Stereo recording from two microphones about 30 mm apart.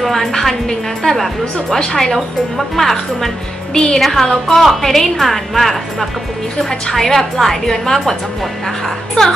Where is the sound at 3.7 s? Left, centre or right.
Left.